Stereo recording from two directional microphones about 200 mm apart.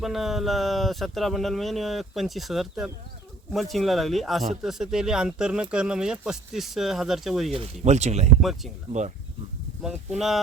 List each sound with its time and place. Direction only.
0.0 s speech: centre (ahead or behind)
7.5 s speech: 30° right (ahead or behind)
8.4 s speech: centre (ahead or behind)
8.9 s speech: 35° right (ahead or behind)
10.2 s speech: centre (ahead or behind)